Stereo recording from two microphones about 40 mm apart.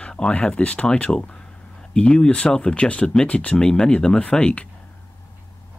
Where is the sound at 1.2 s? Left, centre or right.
Left.